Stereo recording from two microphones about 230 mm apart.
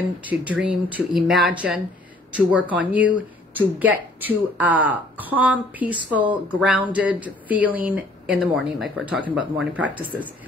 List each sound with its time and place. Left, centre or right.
0.2 s speech: centre